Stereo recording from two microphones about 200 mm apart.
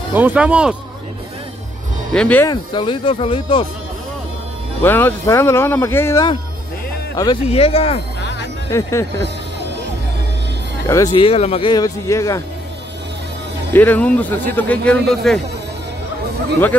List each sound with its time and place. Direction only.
0.1 s speech: 10° right (ahead or behind)
2.1 s speech: 5° left (ahead or behind)
2.5 s speech: 25° left (ahead or behind)
4.8 s speech: 10° left (ahead or behind)
7.5 s speech: 30° left (ahead or behind)
8.2 s music: 60° left (ahead or behind)
8.6 s speech: 15° left (ahead or behind)
10.9 s speech: 15° left (ahead or behind)
11.1 s speech: 30° left (ahead or behind)
13.7 s speech: 10° left (ahead or behind)